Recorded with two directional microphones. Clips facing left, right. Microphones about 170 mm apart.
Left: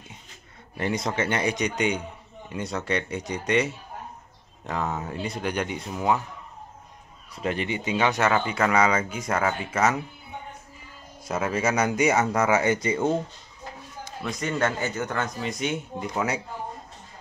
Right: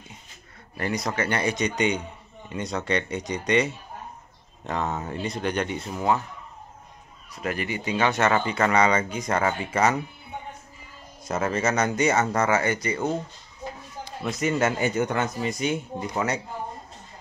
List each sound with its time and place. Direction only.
0.7 s speech: 20° left (ahead or behind)
7.3 s speech: 25° left (ahead or behind); by 10.0 s 5° left (ahead or behind)
11.2 s speech: 10° left (ahead or behind)
14.4 s speech: 10° right (ahead or behind)